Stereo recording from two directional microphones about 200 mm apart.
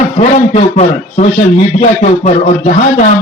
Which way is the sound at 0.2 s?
35° left (ahead or behind).